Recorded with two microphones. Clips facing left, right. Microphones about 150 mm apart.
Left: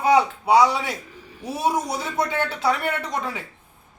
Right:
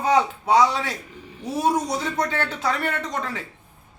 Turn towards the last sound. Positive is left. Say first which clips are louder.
# left 1 dB
turn(degrees=10)  # may be behind; listen again after turning